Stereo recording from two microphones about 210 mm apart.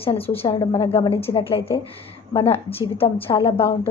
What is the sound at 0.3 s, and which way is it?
A woman's voice, 25° left (ahead or behind).